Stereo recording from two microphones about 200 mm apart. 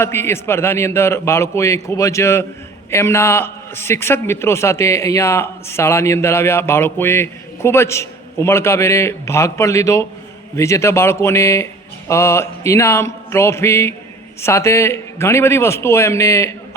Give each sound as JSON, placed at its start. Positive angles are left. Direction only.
{"t": 0.0, "sound": "a man's voice", "side_deg": 10}